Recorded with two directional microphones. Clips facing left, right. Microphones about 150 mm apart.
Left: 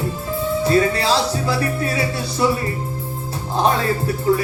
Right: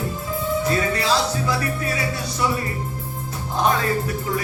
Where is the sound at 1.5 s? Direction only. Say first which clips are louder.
Left 3 dB; 30° left (ahead or behind).